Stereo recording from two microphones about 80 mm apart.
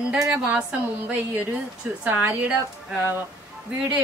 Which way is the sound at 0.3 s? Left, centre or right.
Centre.